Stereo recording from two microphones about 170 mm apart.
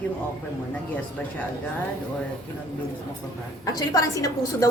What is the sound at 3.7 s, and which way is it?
Speech, 20° left (ahead or behind).